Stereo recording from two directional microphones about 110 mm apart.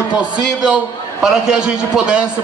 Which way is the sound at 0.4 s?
5° right (ahead or behind).